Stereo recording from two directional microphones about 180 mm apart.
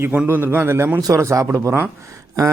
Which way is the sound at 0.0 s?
10° right (ahead or behind).